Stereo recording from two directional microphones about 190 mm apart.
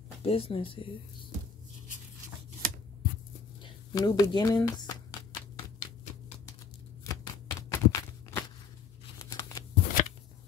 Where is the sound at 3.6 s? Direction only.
20° left (ahead or behind).